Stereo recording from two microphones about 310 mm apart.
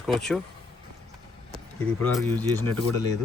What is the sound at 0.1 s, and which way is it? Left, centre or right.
Speech, centre.